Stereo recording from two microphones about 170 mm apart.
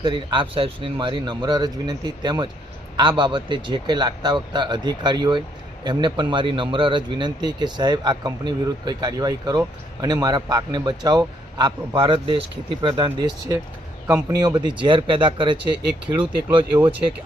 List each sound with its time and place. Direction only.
0.0 s a man's voice: 25° right (ahead or behind)
14.1 s speech: 15° right (ahead or behind)
14.4 s a man's voice: 25° right (ahead or behind)
16.7 s speech: 10° right (ahead or behind)